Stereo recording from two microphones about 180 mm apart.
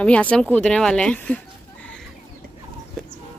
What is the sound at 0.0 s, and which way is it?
Speech, 5° left (ahead or behind).